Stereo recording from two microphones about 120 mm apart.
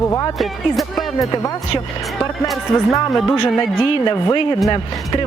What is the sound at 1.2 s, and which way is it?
Speech, 30° left (ahead or behind).